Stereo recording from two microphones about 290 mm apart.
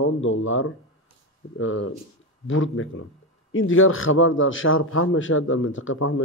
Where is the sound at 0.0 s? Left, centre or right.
Left.